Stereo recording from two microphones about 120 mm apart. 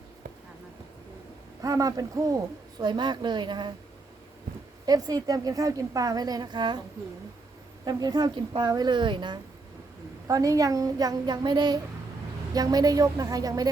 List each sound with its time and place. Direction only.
1.6 s a woman's voice: 30° right (ahead or behind)
4.9 s a woman's voice: 30° right (ahead or behind)
7.9 s a woman's voice: 35° right (ahead or behind)
10.2 s a woman's voice: 30° right (ahead or behind)